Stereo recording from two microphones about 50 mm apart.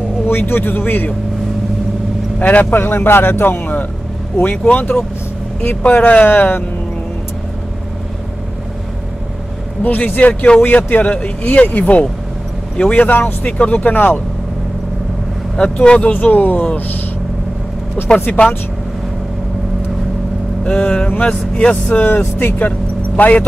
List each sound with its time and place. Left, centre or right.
0.3 s speech: left
2.3 s speech: left
9.8 s speech: left
13.0 s speech: left
13.5 s speech: left
13.7 s speech: left
15.5 s speech: centre
16.1 s speech: left
20.6 s speech: left
22.2 s speech: left
22.7 s vehicle: left